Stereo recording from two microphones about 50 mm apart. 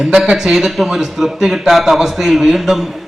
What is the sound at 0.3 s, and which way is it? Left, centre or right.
A man's voice, centre.